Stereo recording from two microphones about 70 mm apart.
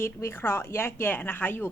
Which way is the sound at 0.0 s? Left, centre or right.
Left.